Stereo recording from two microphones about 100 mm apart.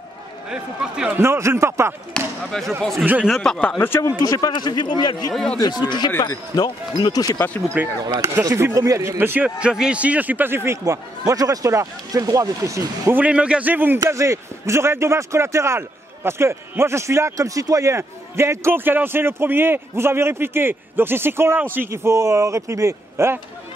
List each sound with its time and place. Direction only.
0.5 s a man's voice: 10° right (ahead or behind)
1.1 s a man's voice: 25° right (ahead or behind)
2.1 s speech: 5° left (ahead or behind)
3.7 s speech: 25° left (ahead or behind)
4.2 s a man's voice: 40° left (ahead or behind)
5.3 s speech: 5° left (ahead or behind)
5.6 s a man's voice: 45° left (ahead or behind)
6.1 s speech: 35° left (ahead or behind)
7.5 s speech: 20° left (ahead or behind)
8.2 s a man's voice: 25° right (ahead or behind)
10.8 s speech: 35° right (ahead or behind)
13.1 s a man's voice: 15° right (ahead or behind)
13.9 s a man's voice: 35° right (ahead or behind)